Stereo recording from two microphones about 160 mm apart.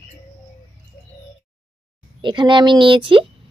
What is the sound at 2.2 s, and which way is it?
Speech, 30° right (ahead or behind).